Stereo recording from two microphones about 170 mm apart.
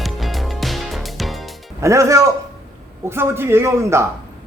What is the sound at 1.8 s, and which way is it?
A man's voice, 20° right (ahead or behind).